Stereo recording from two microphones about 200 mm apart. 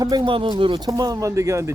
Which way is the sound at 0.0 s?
20° right (ahead or behind).